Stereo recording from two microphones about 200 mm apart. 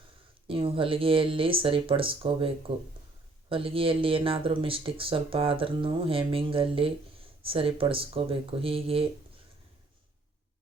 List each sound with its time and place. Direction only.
0.4 s speech: 25° right (ahead or behind)